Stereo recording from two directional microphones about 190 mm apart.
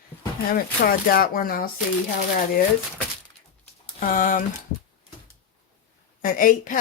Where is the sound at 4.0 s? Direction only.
45° left (ahead or behind).